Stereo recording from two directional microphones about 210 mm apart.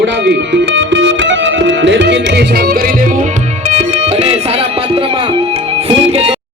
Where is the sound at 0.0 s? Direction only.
55° right (ahead or behind); by 6.4 s 30° right (ahead or behind).